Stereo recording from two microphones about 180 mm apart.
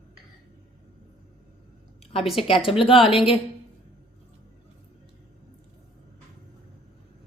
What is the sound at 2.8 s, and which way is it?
Speech, 30° left (ahead or behind).